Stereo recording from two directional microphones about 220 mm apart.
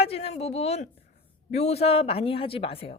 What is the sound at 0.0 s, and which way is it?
A woman's voice, 25° left (ahead or behind).